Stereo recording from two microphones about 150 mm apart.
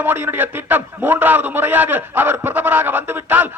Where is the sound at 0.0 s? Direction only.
15° right (ahead or behind).